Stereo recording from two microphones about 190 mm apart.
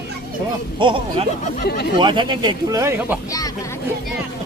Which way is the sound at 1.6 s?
55° left (ahead or behind).